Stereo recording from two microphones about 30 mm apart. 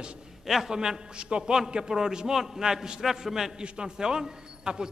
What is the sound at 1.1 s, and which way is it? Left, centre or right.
Speech, right.